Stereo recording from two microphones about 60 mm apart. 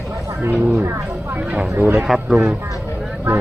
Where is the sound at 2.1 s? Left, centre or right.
Centre.